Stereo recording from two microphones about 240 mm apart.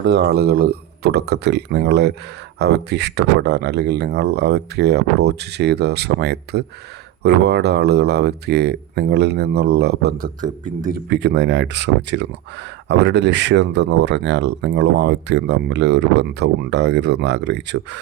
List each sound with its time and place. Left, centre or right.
0.0 s speech: right